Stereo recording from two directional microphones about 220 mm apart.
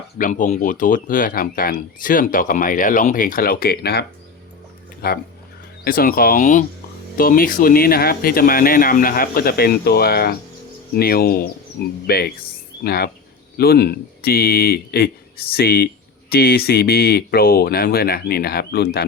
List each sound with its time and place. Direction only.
0.2 s speech: 35° left (ahead or behind)
5.0 s speech: 40° left (ahead or behind)